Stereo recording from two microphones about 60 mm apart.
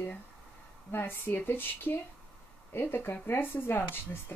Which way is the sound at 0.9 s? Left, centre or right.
Left.